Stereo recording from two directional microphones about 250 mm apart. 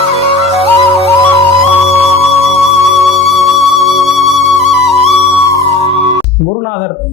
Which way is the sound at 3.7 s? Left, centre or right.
Centre.